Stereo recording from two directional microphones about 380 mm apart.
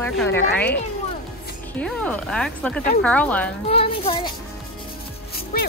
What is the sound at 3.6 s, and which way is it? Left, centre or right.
Speech, centre.